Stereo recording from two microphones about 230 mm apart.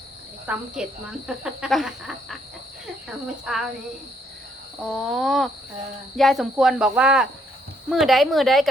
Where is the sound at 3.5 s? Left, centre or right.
Centre.